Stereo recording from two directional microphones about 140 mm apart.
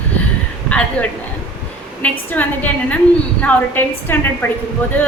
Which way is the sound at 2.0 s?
10° left (ahead or behind).